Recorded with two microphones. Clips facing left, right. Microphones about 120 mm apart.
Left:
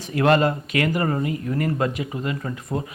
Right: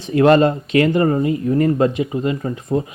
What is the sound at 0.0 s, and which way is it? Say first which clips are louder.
Speech: right 6 dB; 30° right (ahead or behind).